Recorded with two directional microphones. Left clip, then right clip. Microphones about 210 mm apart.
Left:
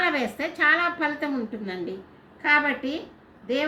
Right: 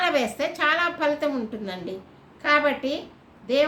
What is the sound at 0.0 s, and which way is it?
A woman's voice, 25° right (ahead or behind).